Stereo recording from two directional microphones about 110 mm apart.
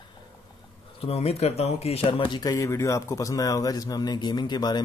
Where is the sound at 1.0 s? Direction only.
65° left (ahead or behind); by 2.4 s 50° left (ahead or behind).